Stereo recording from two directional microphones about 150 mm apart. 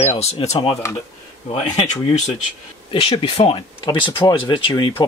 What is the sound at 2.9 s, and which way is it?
Speech, 40° left (ahead or behind).